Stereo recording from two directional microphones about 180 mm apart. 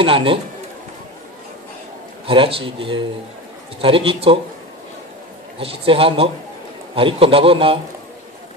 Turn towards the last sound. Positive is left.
turn(degrees=-30)  # may be behind; listen again after turning